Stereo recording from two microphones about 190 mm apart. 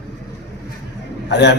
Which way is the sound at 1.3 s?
65° left (ahead or behind).